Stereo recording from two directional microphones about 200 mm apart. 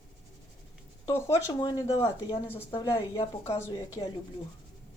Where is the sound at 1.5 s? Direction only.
20° left (ahead or behind).